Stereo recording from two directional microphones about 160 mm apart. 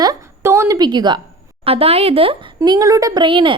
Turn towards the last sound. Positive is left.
turn(degrees=-30)  # may be behind; listen again after turning